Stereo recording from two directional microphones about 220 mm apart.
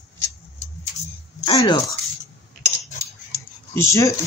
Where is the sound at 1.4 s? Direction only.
20° left (ahead or behind).